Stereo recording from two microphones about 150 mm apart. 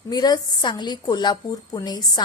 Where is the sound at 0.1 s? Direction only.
25° left (ahead or behind).